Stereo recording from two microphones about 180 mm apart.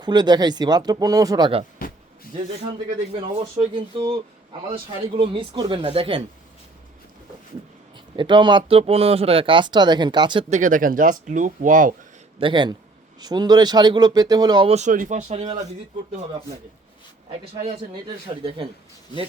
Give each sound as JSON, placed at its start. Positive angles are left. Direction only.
{"t": 0.0, "sound": "speech", "side_deg": -25}
{"t": 3.5, "sound": "speech", "side_deg": -30}
{"t": 7.9, "sound": "speech", "side_deg": -25}
{"t": 10.5, "sound": "speech", "side_deg": -45}
{"t": 12.4, "sound": "speech", "side_deg": -25}